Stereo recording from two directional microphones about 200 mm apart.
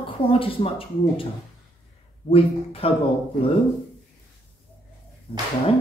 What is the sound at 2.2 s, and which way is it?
Speech, 30° left (ahead or behind).